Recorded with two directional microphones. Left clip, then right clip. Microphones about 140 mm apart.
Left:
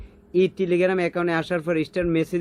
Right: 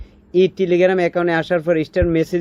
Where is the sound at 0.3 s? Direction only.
20° right (ahead or behind).